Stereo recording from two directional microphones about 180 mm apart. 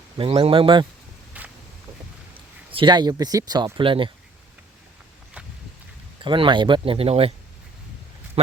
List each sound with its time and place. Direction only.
0.2 s speech: 30° right (ahead or behind)
1.4 s a sound: 10° right (ahead or behind)
2.7 s speech: 25° right (ahead or behind)
6.2 s speech: 25° right (ahead or behind)